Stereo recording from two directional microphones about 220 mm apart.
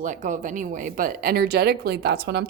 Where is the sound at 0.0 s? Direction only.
35° right (ahead or behind).